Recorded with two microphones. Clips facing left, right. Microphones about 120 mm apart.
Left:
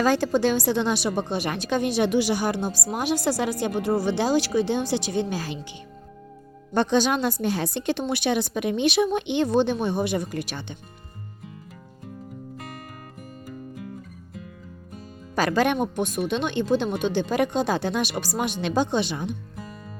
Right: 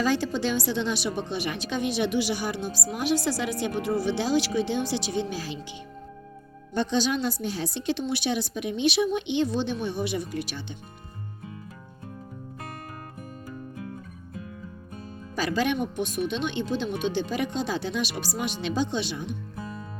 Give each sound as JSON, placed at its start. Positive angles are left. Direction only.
{"t": 0.0, "sound": "speech", "side_deg": 45}
{"t": 6.7, "sound": "a woman's voice", "side_deg": 55}
{"t": 15.4, "sound": "speech", "side_deg": 55}